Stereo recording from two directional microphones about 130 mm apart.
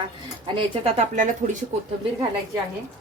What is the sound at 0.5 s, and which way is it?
Speech, 50° right (ahead or behind).